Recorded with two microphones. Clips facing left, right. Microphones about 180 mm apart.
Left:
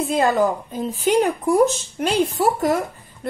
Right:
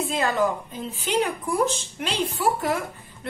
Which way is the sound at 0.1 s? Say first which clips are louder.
Left 6 dB; 40° left (ahead or behind).